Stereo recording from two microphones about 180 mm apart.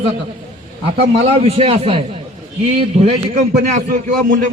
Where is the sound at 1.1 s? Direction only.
35° right (ahead or behind).